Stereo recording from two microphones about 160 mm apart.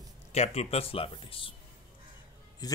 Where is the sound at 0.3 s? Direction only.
40° left (ahead or behind).